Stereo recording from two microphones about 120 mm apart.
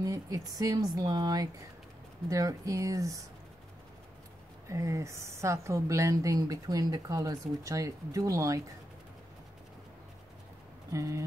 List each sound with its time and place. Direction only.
0.0 s speech: 30° right (ahead or behind)
4.6 s speech: 25° right (ahead or behind)
10.9 s speech: 25° right (ahead or behind)